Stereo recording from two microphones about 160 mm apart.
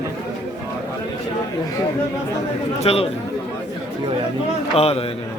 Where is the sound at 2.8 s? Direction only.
35° left (ahead or behind).